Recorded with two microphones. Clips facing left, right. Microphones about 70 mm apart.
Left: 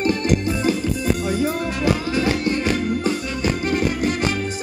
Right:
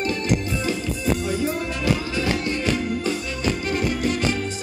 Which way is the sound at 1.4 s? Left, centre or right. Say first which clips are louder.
Left 3 dB; left.